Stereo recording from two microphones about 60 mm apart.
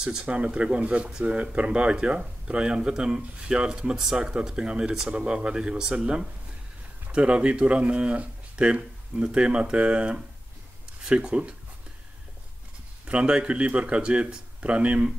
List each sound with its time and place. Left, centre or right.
0.0 s speech: centre
13.0 s speech: centre